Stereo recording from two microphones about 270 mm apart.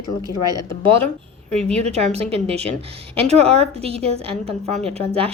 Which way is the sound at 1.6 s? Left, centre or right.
Right.